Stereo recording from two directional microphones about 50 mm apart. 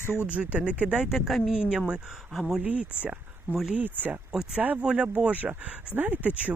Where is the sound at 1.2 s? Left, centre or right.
Centre.